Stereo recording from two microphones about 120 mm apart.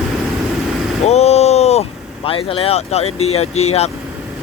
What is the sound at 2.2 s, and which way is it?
Speech, 50° left (ahead or behind).